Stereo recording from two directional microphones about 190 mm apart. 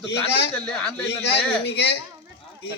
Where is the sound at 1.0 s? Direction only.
65° left (ahead or behind).